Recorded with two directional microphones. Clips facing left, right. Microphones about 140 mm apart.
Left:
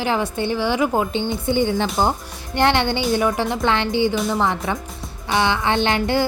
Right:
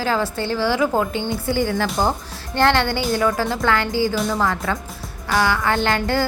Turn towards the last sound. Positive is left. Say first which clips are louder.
# left 1 dB
turn(degrees=20)  # may be behind; listen again after turning